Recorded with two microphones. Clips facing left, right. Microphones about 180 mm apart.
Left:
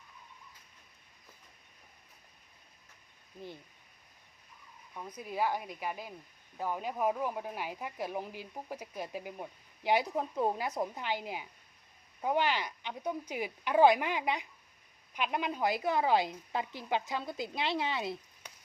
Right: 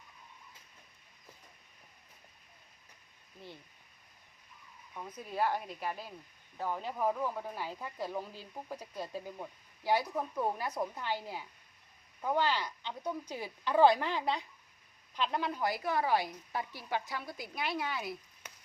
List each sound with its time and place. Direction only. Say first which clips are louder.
5.1 s a woman's voice: even; 10° left (ahead or behind)